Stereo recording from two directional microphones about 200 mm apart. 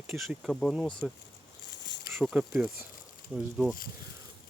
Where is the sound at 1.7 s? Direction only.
60° left (ahead or behind).